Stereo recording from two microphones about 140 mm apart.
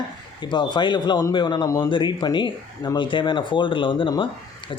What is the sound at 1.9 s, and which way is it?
Speech, 35° left (ahead or behind).